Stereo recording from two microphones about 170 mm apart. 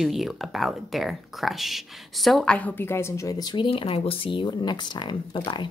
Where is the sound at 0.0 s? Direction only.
Centre (ahead or behind); by 5.7 s 30° left (ahead or behind).